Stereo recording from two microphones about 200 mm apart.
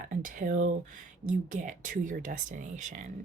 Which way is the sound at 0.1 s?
40° right (ahead or behind).